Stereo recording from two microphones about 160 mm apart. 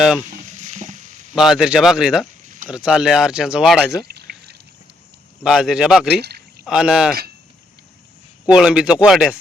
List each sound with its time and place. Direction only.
0.3 s a sound: 50° right (ahead or behind)
1.4 s speech: 5° right (ahead or behind)
4.1 s pour: 85° right
5.4 s speech: 5° right (ahead or behind)
6.2 s pour: 85° right
6.7 s speech: 5° right (ahead or behind)
8.4 s speech: 5° right (ahead or behind)